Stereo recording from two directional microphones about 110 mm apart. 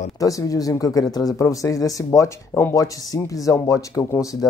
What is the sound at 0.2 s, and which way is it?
Speech, 30° left (ahead or behind).